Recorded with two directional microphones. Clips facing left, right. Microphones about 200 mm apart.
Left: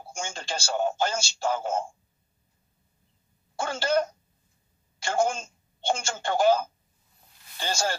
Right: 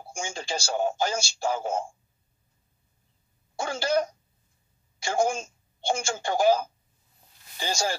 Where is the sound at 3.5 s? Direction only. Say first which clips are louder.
Even; 15° right (ahead or behind).